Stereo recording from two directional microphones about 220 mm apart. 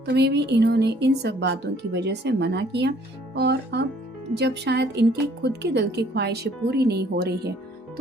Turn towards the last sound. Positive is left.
turn(degrees=-45)  # may be behind; listen again after turning